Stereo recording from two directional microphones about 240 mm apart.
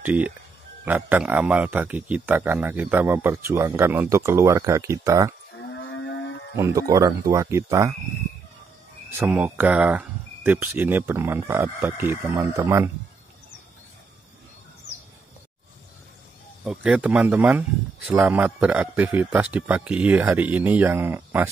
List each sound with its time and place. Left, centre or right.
0.0 s a man's voice: centre
5.6 s cattle: left
6.5 s a man's voice: centre
9.2 s a man's voice: centre
16.6 s a man's voice: centre